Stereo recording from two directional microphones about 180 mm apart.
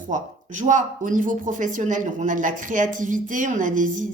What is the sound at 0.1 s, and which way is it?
Speech, 45° right (ahead or behind).